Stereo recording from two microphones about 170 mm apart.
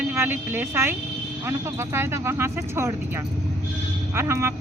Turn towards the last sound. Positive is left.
turn(degrees=-15)  # may be behind; listen again after turning